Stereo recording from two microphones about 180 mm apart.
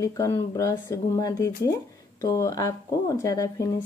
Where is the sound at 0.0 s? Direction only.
15° left (ahead or behind).